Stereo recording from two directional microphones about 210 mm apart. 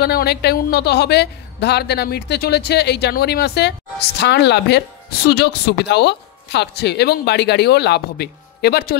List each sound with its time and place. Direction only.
0.0 s a woman's voice: 50° left (ahead or behind)